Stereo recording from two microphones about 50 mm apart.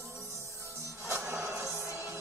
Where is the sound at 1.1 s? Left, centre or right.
Right.